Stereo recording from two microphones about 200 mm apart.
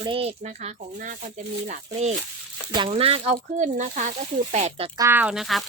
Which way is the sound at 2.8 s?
30° right (ahead or behind).